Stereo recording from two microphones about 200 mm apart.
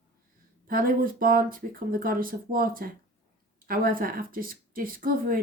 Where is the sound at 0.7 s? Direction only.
45° right (ahead or behind).